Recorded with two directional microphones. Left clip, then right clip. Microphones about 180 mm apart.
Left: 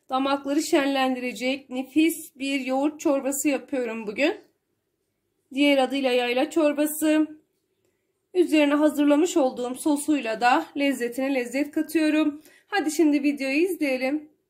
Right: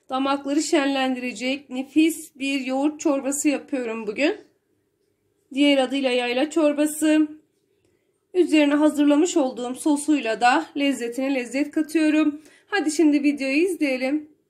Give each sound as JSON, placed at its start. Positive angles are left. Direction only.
{"t": 0.0, "sound": "a woman's voice", "side_deg": 5}
{"t": 5.5, "sound": "a woman's voice", "side_deg": 0}
{"t": 8.3, "sound": "a woman's voice", "side_deg": 0}